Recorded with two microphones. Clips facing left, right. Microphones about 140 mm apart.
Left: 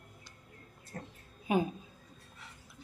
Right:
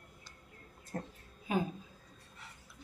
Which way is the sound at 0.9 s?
40° right (ahead or behind).